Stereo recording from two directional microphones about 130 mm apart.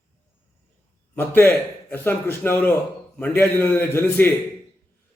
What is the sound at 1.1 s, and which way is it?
A man's voice, 15° left (ahead or behind).